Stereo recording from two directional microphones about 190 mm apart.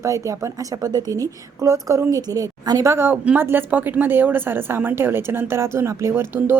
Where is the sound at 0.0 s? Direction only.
15° right (ahead or behind).